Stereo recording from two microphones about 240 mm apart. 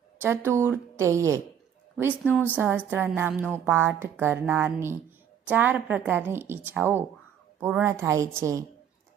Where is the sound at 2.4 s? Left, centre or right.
Centre.